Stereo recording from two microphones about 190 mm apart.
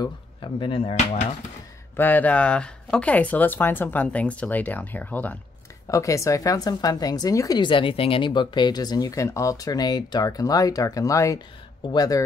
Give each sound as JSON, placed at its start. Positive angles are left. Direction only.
{"t": 0.0, "sound": "speech", "side_deg": 25}
{"t": 2.0, "sound": "speech", "side_deg": 10}